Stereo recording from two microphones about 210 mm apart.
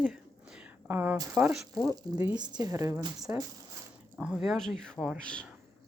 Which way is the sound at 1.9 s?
15° right (ahead or behind).